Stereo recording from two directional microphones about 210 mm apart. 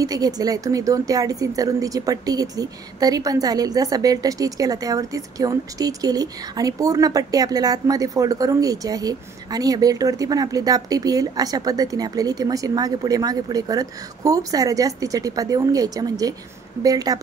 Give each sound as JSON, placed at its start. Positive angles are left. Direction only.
{"t": 0.0, "sound": "speech", "side_deg": -15}